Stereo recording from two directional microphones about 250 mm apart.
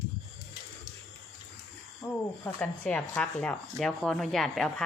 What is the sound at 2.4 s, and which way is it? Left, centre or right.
Speech, centre.